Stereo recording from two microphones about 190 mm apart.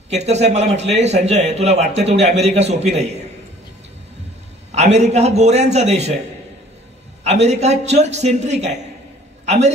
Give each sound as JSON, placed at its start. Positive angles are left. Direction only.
{"t": 0.1, "sound": "a man's voice", "side_deg": -35}
{"t": 4.7, "sound": "a man's voice", "side_deg": -35}
{"t": 7.2, "sound": "a man's voice", "side_deg": -35}